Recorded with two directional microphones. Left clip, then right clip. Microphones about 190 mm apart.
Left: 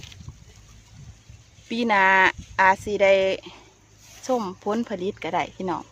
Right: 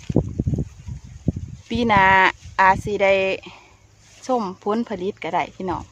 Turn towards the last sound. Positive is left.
turn(degrees=-5)  # may be behind; listen again after turning